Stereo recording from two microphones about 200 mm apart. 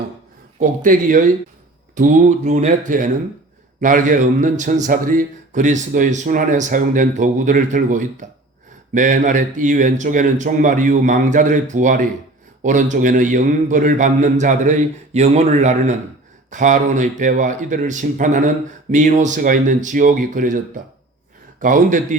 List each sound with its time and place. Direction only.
0.6 s a man's voice: 40° right (ahead or behind)